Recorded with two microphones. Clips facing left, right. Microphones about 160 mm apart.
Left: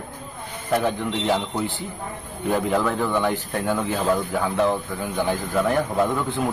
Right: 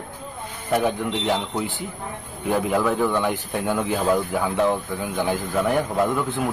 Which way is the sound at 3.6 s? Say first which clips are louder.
Right 1 dB; 5° right (ahead or behind).